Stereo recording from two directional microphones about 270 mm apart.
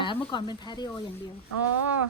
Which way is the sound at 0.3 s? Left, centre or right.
Centre.